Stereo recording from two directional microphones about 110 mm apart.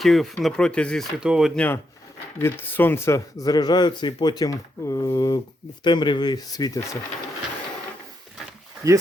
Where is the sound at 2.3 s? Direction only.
20° left (ahead or behind); by 6.8 s 35° left (ahead or behind).